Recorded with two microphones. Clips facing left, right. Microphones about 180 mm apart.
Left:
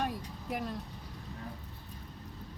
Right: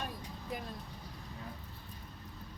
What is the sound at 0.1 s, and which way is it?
Vehicle, 75° left (ahead or behind).